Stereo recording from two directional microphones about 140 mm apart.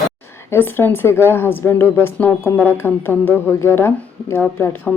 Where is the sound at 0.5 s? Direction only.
15° left (ahead or behind).